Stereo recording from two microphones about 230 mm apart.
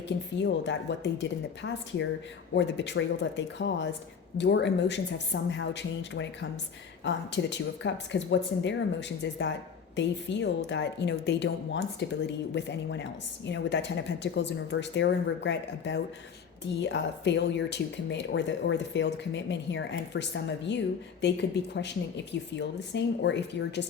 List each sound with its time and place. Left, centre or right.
0.3 s speech: left